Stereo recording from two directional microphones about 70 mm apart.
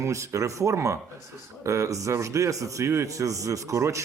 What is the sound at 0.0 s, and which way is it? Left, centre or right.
Speech, right.